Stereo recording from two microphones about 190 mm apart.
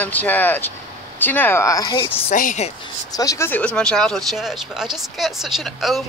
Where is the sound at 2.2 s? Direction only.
40° left (ahead or behind).